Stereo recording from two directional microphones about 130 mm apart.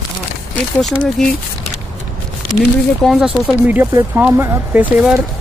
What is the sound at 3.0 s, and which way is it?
Speech, 5° right (ahead or behind).